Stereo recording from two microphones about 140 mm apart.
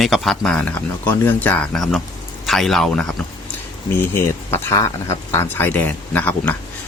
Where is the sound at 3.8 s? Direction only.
15° left (ahead or behind).